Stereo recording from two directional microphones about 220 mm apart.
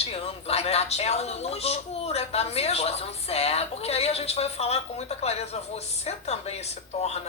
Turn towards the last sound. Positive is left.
turn(degrees=30)  # may be behind; listen again after turning